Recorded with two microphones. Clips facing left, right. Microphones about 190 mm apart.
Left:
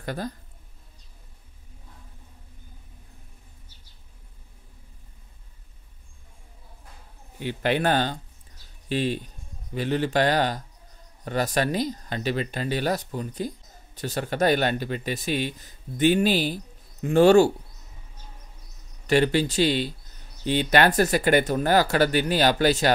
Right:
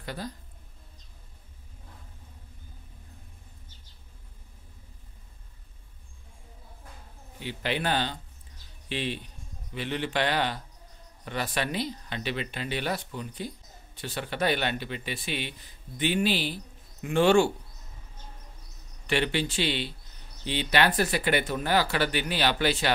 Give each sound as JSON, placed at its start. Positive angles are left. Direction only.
{"t": 0.0, "sound": "speech", "side_deg": 50}
{"t": 7.3, "sound": "speech", "side_deg": 50}
{"t": 19.0, "sound": "speech", "side_deg": 40}